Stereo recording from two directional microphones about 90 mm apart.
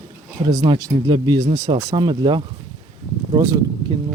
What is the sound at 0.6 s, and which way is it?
Speech, 60° right (ahead or behind).